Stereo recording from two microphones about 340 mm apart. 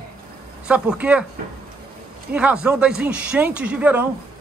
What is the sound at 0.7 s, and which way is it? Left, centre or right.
Speech, centre.